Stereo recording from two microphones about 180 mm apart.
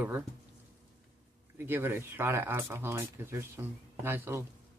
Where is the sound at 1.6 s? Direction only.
10° right (ahead or behind).